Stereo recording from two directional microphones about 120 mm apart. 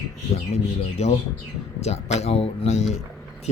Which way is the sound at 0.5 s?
70° left (ahead or behind).